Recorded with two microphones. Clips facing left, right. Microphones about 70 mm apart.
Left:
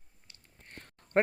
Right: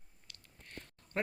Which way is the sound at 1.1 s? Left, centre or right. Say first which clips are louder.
Left 10 dB; left.